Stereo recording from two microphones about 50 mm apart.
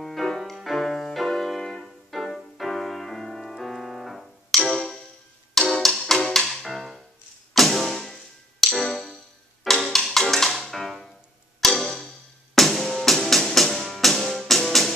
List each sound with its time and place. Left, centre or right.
0.0 s music: centre